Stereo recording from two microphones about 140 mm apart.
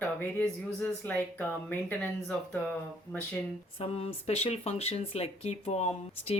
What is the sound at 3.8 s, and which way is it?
Speech, 45° left (ahead or behind).